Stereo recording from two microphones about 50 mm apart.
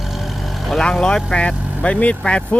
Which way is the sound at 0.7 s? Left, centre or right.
Centre.